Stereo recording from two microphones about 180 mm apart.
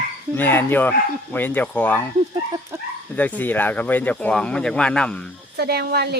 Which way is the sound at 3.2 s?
10° left (ahead or behind).